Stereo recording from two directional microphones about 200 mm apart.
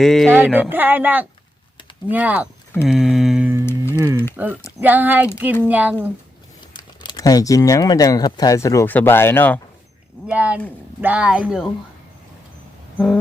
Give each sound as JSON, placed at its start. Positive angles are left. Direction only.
{"t": 0.0, "sound": "mantra", "side_deg": 0}
{"t": 0.3, "sound": "a woman's voice", "side_deg": -10}
{"t": 2.8, "sound": "mantra", "side_deg": 0}
{"t": 3.7, "sound": "speech", "side_deg": 10}
{"t": 4.4, "sound": "a woman's voice", "side_deg": -10}
{"t": 6.7, "sound": "speech", "side_deg": 20}
{"t": 10.2, "sound": "mantra", "side_deg": -5}